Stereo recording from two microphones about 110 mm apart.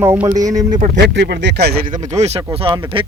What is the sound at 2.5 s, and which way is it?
Speech, 50° right (ahead or behind).